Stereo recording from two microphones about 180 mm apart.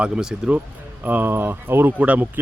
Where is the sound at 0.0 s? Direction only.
5° right (ahead or behind).